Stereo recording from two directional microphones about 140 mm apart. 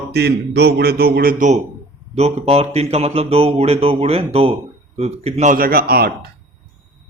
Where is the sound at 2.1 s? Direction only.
50° right (ahead or behind); by 5.9 s 90° right.